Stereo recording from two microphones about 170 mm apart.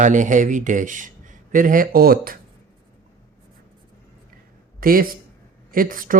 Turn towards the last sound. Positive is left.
turn(degrees=-55)  # may be behind; listen again after turning